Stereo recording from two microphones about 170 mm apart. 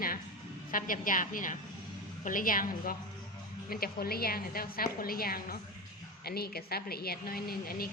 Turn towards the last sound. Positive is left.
turn(degrees=60)  # may be behind; listen again after turning